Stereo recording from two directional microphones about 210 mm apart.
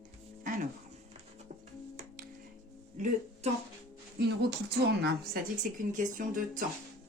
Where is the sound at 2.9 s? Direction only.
35° right (ahead or behind).